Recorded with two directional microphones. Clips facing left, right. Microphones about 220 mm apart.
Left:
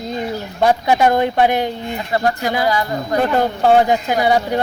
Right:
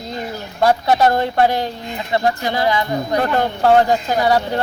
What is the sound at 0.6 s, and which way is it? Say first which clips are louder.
Speech: even; 15° left (ahead or behind).